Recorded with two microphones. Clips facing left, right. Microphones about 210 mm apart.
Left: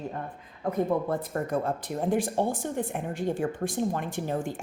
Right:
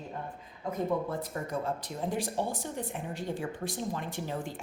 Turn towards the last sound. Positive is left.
turn(degrees=50)  # may be behind; listen again after turning